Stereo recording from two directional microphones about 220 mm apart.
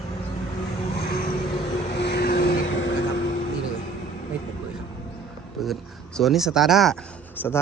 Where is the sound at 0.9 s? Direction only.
45° left (ahead or behind).